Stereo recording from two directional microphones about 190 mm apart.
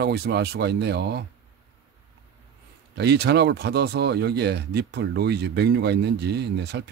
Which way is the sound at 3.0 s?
60° right (ahead or behind).